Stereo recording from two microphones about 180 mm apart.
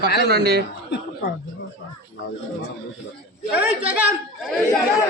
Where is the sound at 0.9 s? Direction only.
60° left (ahead or behind).